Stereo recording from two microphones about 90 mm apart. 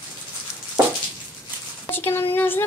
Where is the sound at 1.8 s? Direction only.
25° left (ahead or behind).